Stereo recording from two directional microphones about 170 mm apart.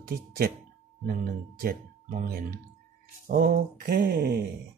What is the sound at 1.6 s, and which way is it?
Speech, 60° right (ahead or behind).